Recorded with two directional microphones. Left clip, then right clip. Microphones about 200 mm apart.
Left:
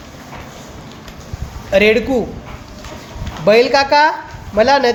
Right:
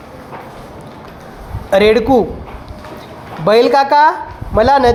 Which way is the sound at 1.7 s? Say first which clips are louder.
Right 3 dB; 15° right (ahead or behind).